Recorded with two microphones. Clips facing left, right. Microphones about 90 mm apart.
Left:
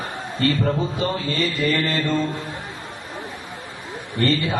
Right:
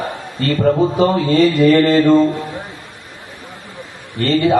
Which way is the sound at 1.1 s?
40° right (ahead or behind).